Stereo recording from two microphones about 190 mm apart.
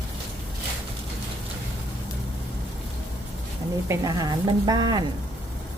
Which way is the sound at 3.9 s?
20° right (ahead or behind).